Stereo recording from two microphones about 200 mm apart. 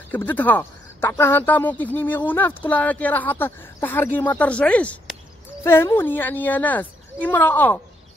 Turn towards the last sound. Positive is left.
turn(degrees=10)  # may be behind; listen again after turning